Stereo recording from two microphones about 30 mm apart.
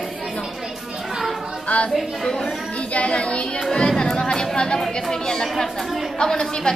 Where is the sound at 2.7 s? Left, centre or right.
Left.